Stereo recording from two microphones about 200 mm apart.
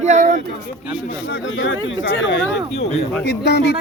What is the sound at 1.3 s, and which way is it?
Speech, 65° left (ahead or behind).